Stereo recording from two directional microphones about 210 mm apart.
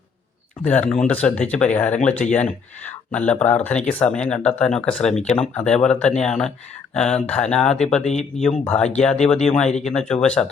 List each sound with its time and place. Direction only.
0.6 s speech: 5° left (ahead or behind)
8.0 s speech: 30° left (ahead or behind)
8.4 s speech: 5° left (ahead or behind)